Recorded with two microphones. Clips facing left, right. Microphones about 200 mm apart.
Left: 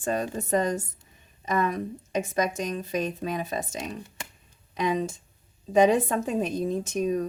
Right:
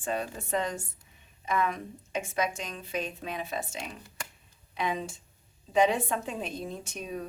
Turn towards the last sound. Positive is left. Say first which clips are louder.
# left 11 dB
turn(degrees=45)  # may be behind; listen again after turning